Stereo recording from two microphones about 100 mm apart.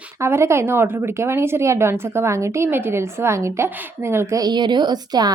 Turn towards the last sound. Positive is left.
turn(degrees=-40)  # may be behind; listen again after turning